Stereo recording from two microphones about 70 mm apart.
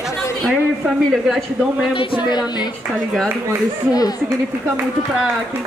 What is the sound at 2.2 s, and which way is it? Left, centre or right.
Speech, left.